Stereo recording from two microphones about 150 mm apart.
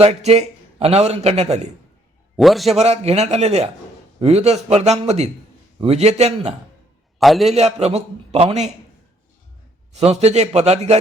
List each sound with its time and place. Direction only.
0.0 s a man's voice: 45° right (ahead or behind)
2.3 s a man's voice: centre (ahead or behind)
2.7 s a man's voice: 45° right (ahead or behind)
7.2 s a man's voice: centre (ahead or behind)
7.5 s a man's voice: 45° right (ahead or behind)
10.1 s a man's voice: 45° right (ahead or behind)